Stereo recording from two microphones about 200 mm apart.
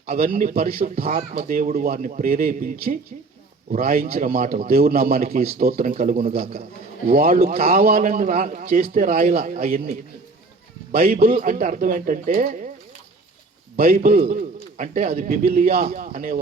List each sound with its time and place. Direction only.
0.0 s a man's voice: 45° right (ahead or behind)
13.7 s a man's voice: 45° right (ahead or behind)